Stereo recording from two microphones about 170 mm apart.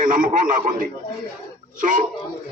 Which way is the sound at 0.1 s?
55° right (ahead or behind).